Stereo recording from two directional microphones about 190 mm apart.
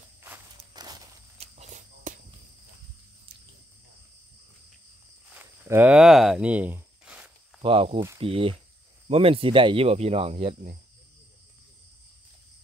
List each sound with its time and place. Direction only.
0.2 s walk: 15° right (ahead or behind)
1.4 s walk: 35° right (ahead or behind)
5.3 s a sound: 10° right (ahead or behind)
7.6 s speech: 30° right (ahead or behind)